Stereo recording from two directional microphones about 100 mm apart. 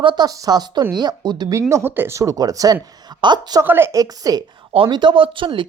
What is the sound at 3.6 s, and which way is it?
Speech, 20° right (ahead or behind).